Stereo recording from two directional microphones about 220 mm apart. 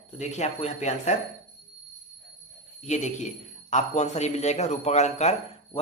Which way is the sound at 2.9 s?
35° left (ahead or behind).